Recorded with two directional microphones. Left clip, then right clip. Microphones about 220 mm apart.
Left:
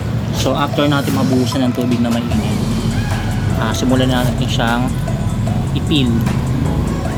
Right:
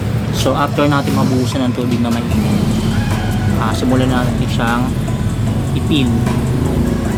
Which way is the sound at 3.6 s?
10° left (ahead or behind).